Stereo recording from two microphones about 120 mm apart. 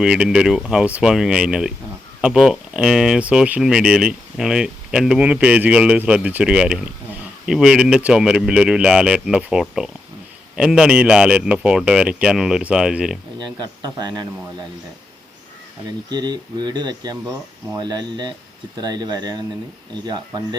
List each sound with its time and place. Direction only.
0.0 s speech: 5° right (ahead or behind)
13.4 s speech: 35° right (ahead or behind)
15.9 s speech: 35° right (ahead or behind)